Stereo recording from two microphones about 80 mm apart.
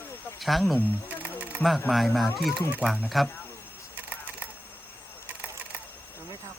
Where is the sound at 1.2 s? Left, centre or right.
Centre.